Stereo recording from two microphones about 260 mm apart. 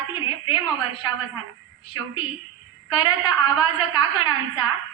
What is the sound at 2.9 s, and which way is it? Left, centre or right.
A woman's voice, centre.